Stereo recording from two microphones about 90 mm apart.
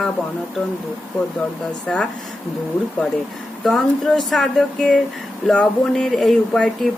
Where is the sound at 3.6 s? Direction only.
5° left (ahead or behind).